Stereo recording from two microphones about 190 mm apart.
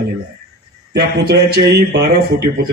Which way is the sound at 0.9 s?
55° right (ahead or behind).